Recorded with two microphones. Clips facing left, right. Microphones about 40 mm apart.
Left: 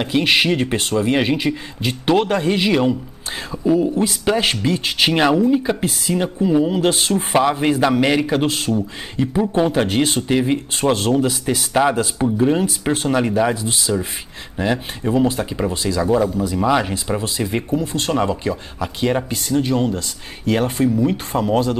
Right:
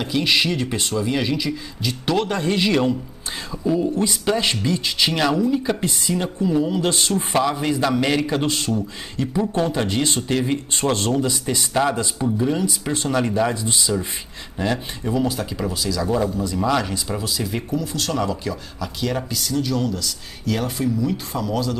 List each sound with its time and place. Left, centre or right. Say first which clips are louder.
0.0 s speech: left 3 dB; left
2.1 s a man's voice: left 3 dB; left
4.0 s speech: left 3 dB; left
5.3 s a man's voice: left 4 dB; centre
12.2 s a man's voice: left 5 dB; left
15.2 s speech: left 4 dB; left
16.1 s a man's voice: left 5 dB; centre
16.4 s speech: left 3 dB; left